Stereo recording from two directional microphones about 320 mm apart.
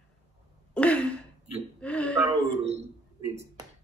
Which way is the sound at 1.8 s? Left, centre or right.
Centre.